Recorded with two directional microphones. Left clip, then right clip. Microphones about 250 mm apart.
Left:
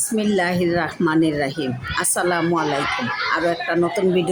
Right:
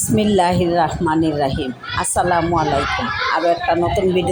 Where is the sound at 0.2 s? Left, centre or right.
Centre.